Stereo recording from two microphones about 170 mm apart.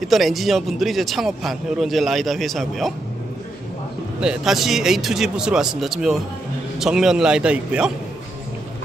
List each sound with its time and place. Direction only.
0.0 s speech: centre (ahead or behind)
4.2 s speech: 5° right (ahead or behind)